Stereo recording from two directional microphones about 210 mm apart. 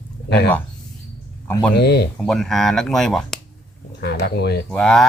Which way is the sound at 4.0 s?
50° left (ahead or behind).